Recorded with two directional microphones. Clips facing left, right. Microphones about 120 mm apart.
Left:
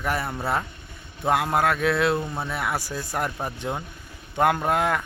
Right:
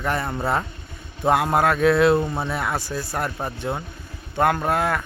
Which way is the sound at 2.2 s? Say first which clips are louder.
Right 5 dB; 20° right (ahead or behind).